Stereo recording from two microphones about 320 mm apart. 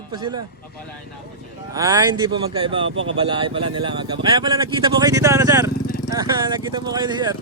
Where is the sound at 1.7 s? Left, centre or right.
Centre.